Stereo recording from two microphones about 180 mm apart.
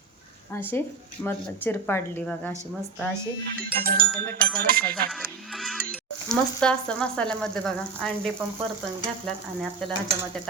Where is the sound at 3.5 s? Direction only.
55° right (ahead or behind).